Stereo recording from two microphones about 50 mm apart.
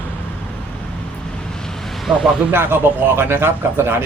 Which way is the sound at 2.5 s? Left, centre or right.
Right.